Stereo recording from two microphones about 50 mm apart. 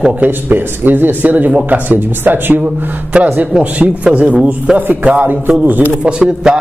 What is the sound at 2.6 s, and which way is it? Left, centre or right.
Speech, right.